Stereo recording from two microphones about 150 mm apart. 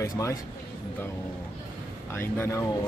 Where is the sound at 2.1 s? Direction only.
15° left (ahead or behind).